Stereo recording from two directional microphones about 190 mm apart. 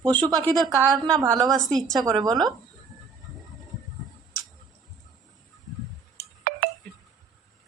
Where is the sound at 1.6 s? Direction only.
Centre (ahead or behind).